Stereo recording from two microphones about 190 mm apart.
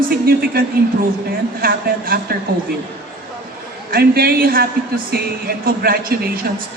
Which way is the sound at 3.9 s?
55° right (ahead or behind).